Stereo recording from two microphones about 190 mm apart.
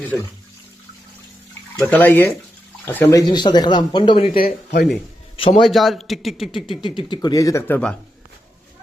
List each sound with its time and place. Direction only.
1.8 s speech: 10° left (ahead or behind); by 4.3 s 25° left (ahead or behind)
4.4 s speech: 55° left (ahead or behind)
5.4 s speech: 30° left (ahead or behind)
5.6 s a man's voice: centre (ahead or behind)
6.7 s speech: 25° left (ahead or behind)